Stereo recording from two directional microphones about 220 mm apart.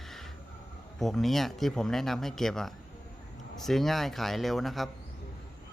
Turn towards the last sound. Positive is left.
turn(degrees=0)  # may be behind; listen again after turning